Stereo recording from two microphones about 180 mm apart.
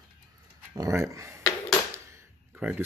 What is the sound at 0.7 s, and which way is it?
Speech, 20° right (ahead or behind).